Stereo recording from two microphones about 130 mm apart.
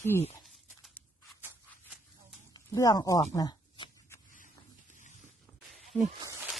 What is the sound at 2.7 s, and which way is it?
A woman's voice, 25° left (ahead or behind).